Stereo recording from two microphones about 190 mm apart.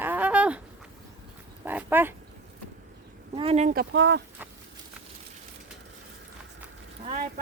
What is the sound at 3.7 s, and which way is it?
Speech, 70° right (ahead or behind).